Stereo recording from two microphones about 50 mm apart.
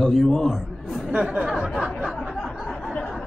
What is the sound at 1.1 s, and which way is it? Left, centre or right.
Speech, right.